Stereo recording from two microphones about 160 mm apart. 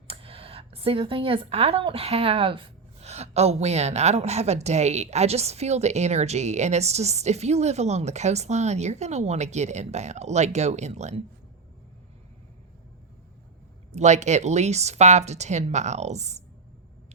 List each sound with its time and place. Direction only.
0.1 s speech: 35° right (ahead or behind)
13.9 s speech: 45° right (ahead or behind)